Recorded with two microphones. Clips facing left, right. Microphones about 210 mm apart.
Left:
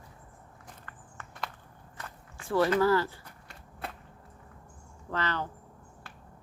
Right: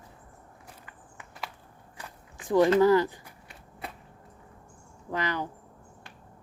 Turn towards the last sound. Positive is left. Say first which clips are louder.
# right 2 dB
turn(degrees=-15)  # may be behind; listen again after turning